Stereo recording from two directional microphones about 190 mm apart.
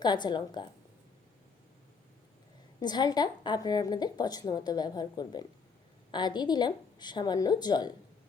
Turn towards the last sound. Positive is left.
turn(degrees=20)  # may be behind; listen again after turning